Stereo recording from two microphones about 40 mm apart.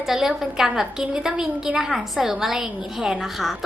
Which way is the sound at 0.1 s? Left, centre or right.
Centre.